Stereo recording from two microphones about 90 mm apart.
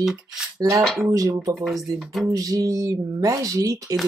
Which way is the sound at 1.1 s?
40° right (ahead or behind).